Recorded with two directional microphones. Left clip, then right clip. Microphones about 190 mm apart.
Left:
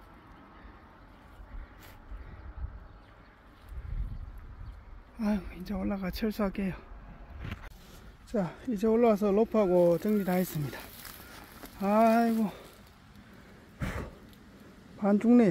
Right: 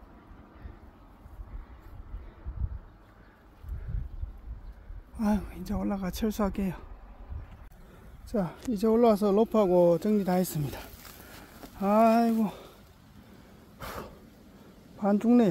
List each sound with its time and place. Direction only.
5.2 s speech: 20° right (ahead or behind)
8.3 s speech: 5° right (ahead or behind)
13.7 s a sound: 10° left (ahead or behind)
15.0 s speech: 10° left (ahead or behind)